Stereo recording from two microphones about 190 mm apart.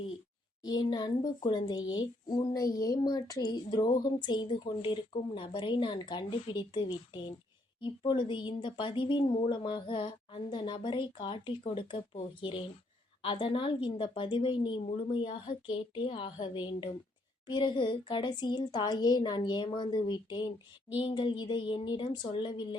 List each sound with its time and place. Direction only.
0.6 s speech: 20° left (ahead or behind)